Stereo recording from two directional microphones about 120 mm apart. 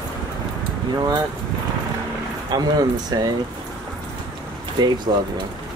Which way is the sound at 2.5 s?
35° right (ahead or behind).